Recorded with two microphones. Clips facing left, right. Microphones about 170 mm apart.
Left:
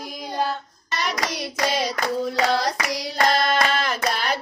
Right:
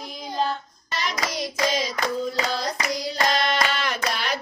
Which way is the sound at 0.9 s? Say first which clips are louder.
Left 2 dB; 65° left (ahead or behind).